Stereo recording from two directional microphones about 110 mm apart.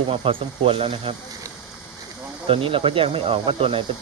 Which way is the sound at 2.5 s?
55° right (ahead or behind).